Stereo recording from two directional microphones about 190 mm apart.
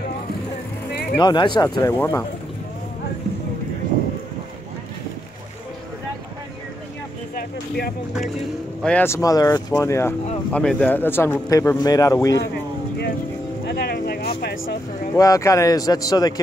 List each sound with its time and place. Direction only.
1.1 s speech: 25° left (ahead or behind)
7.3 s music: 55° left (ahead or behind)
8.8 s a man's voice: 10° left (ahead or behind)
13.7 s a sound: 55° left (ahead or behind)
15.1 s speech: 15° left (ahead or behind)